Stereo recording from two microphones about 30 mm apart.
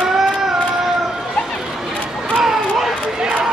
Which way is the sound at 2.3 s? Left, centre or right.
Centre.